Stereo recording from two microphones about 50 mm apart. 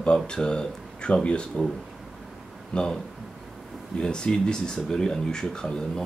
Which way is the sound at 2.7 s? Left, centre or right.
Centre.